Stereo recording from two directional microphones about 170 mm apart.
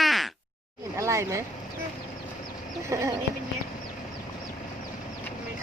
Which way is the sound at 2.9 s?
20° right (ahead or behind).